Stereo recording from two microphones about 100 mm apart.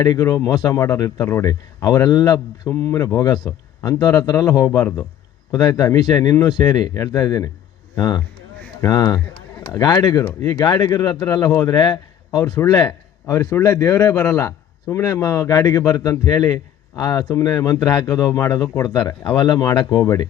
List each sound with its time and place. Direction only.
0.0 s a man's voice: 35° left (ahead or behind)